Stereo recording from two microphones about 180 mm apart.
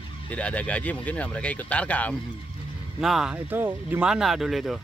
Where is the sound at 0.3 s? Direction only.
5° left (ahead or behind).